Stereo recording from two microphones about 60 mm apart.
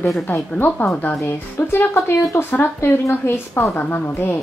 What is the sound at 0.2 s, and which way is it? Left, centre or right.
A woman's voice, left.